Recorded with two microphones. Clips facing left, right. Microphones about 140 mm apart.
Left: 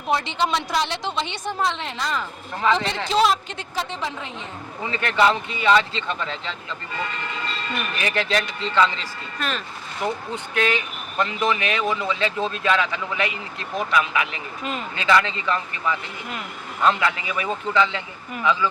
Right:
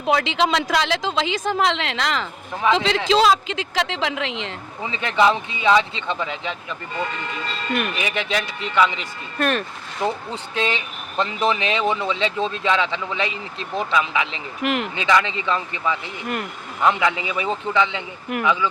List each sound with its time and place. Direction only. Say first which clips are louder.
0.1 s a woman's voice: right 3 dB; 90° right
4.8 s speech: right 1 dB; 20° right (ahead or behind)
7.9 s speech: left 1 dB; 15° right (ahead or behind)
9.4 s speech: right 7 dB; 55° right (ahead or behind)
10.0 s speech: right 2 dB; 25° right (ahead or behind)
14.6 s speech: right 7 dB; 75° right (ahead or behind)
14.9 s speech: left 4 dB; 20° right (ahead or behind)